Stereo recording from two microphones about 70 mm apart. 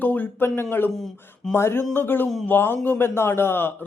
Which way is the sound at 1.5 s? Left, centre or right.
Left.